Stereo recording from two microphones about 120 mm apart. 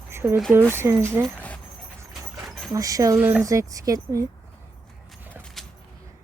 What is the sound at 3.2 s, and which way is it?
Speech, 10° right (ahead or behind).